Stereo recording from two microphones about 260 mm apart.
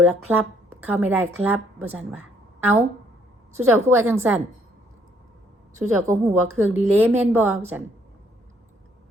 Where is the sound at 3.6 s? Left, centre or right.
Centre.